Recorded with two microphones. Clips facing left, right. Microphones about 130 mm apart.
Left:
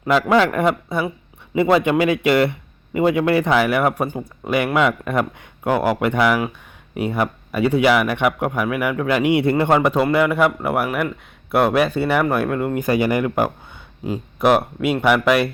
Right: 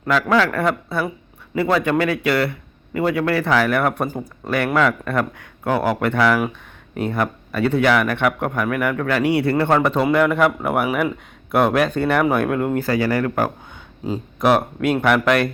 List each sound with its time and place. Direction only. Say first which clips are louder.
0.1 s speech: left 2 dB; 20° left (ahead or behind)
4.0 s speech: left 1 dB; centre (ahead or behind)
4.4 s speech: left 1 dB; 15° left (ahead or behind)
12.7 s speech: left 1 dB; 20° left (ahead or behind)